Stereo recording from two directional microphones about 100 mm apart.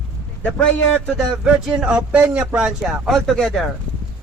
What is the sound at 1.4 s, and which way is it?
Speech, 5° right (ahead or behind).